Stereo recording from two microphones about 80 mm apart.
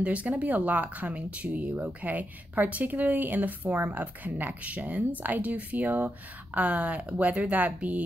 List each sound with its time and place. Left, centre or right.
0.0 s speech: centre